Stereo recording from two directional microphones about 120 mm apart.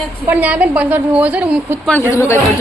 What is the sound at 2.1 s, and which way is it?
Speech, 20° left (ahead or behind).